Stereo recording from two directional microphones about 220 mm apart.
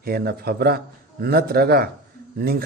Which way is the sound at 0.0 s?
45° right (ahead or behind).